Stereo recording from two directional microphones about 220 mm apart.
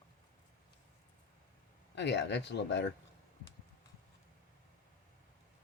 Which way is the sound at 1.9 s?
50° left (ahead or behind).